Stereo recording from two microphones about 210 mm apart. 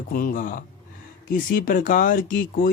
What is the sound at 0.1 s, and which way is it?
Speech, 40° left (ahead or behind).